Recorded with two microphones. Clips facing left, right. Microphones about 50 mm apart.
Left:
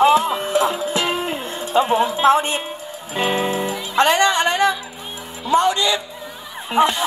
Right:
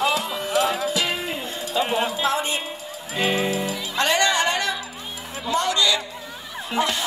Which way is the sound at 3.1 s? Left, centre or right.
Left.